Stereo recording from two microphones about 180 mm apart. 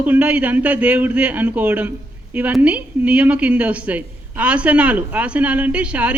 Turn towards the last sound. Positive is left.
turn(degrees=-5)  # may be behind; listen again after turning